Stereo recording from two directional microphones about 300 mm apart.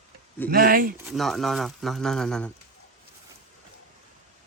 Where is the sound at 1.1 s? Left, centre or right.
Centre.